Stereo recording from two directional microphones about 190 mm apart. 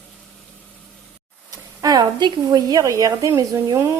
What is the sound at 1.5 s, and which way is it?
Speech, 20° right (ahead or behind).